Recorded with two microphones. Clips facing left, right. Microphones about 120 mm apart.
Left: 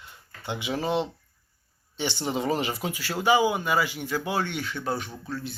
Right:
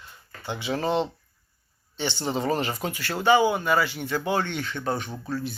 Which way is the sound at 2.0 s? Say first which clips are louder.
Right 1 dB; 15° left (ahead or behind).